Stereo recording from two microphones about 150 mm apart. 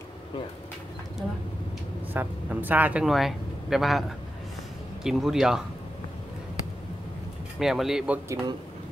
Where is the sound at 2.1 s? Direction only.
10° right (ahead or behind).